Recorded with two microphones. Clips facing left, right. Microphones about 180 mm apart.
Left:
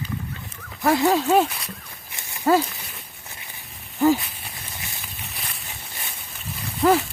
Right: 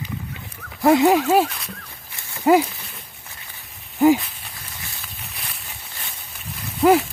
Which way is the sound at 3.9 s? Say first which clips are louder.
Right 3 dB; 15° right (ahead or behind).